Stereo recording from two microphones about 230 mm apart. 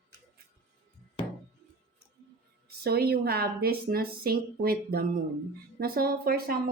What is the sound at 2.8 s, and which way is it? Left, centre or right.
A woman's voice, right.